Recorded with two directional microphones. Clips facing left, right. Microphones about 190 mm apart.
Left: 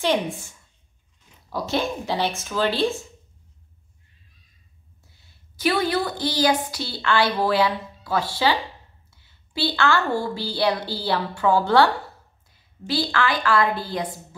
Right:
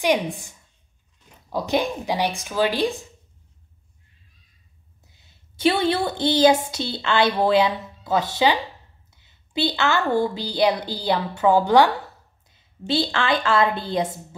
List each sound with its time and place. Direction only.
0.0 s speech: 15° right (ahead or behind)
5.0 s a woman's voice: 20° right (ahead or behind)